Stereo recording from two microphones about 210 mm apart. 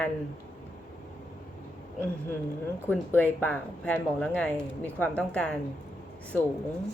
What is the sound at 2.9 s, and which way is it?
Speech, 10° left (ahead or behind).